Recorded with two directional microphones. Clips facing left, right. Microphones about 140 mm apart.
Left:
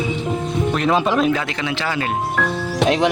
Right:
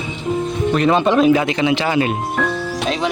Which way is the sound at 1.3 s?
20° right (ahead or behind).